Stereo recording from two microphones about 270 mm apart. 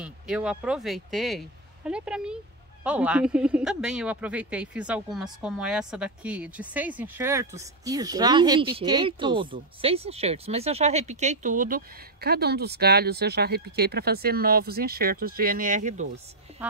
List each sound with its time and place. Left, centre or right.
0.0 s speech: centre; by 16.1 s right